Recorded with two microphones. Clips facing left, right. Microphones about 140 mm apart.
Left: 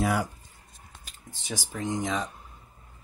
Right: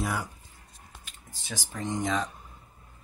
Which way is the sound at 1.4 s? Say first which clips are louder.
Left 2 dB; 15° left (ahead or behind).